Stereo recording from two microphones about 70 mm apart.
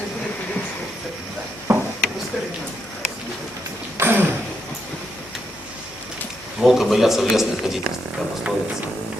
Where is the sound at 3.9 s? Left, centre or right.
Right.